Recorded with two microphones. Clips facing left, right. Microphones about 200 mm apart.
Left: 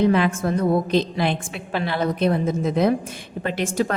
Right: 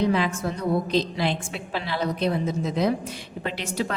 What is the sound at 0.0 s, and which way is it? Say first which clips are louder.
A woman's voice: left 4 dB; 55° left (ahead or behind).